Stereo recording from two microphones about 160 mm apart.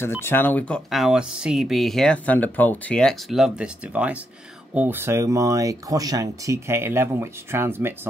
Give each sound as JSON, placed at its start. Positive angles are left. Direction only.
{"t": 0.0, "sound": "speech", "side_deg": 15}